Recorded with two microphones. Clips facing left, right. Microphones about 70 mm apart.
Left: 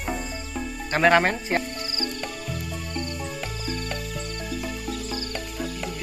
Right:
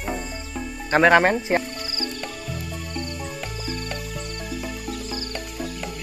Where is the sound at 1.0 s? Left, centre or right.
Centre.